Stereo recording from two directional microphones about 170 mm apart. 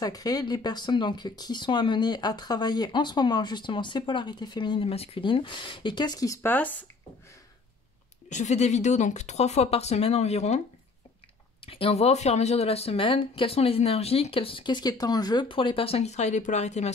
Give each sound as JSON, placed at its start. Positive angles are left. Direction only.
{"t": 0.0, "sound": "speech", "side_deg": 20}
{"t": 8.3, "sound": "speech", "side_deg": 45}
{"t": 11.6, "sound": "speech", "side_deg": 35}